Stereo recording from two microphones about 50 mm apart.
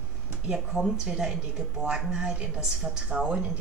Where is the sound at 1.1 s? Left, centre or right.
Centre.